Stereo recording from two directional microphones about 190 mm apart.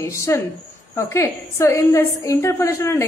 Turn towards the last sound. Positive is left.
turn(degrees=15)  # may be behind; listen again after turning